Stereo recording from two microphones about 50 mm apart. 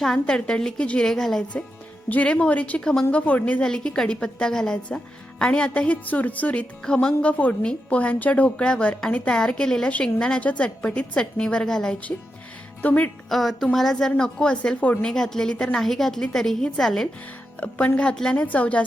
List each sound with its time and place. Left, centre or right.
0.0 s a woman's voice: centre
2.0 s speech: left
2.8 s a woman's voice: centre
3.1 s speech: left
3.6 s a woman's voice: centre; by 6.7 s left
6.8 s a woman's voice: centre
12.8 s a woman's voice: left
13.3 s a woman's voice: centre
14.2 s speech: centre
15.0 s a woman's voice: centre
17.6 s speech: left
18.3 s speech: left